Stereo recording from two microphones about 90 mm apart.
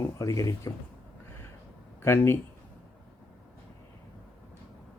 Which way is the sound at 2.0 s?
30° left (ahead or behind).